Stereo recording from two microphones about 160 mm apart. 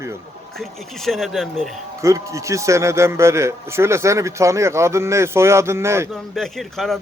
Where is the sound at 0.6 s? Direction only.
Centre (ahead or behind).